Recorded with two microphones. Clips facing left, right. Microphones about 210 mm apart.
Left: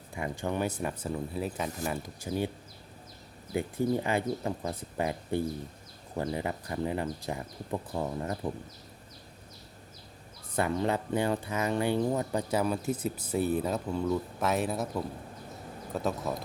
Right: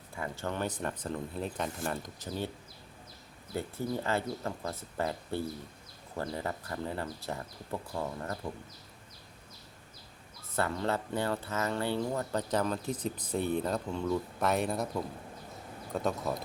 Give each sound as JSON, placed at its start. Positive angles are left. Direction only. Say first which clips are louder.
{"t": 0.2, "sound": "speech", "louder": "left 3 dB", "side_deg": 15}
{"t": 3.5, "sound": "speech", "louder": "left 5 dB", "side_deg": 15}
{"t": 10.5, "sound": "speech", "louder": "left 3 dB", "side_deg": 15}